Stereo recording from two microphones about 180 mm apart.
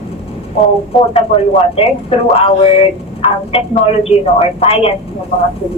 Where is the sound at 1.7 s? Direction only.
30° left (ahead or behind).